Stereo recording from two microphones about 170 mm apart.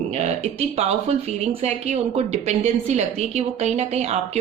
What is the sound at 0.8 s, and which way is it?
Speech, 40° right (ahead or behind).